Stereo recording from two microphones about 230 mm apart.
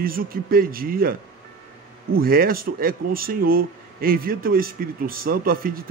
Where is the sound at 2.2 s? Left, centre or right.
Right.